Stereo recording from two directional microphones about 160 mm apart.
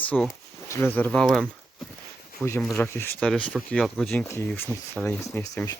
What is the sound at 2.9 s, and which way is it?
Speech, 15° left (ahead or behind).